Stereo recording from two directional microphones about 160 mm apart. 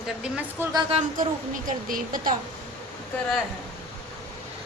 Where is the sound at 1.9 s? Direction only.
60° right (ahead or behind).